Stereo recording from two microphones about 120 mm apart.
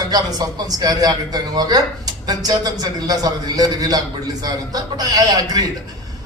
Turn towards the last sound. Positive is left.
turn(degrees=-35)  # may be behind; listen again after turning